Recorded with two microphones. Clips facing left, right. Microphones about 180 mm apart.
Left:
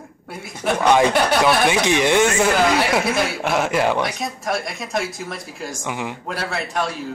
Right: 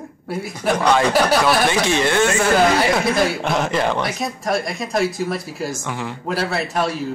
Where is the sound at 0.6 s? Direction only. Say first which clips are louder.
Right 1 dB; centre (ahead or behind).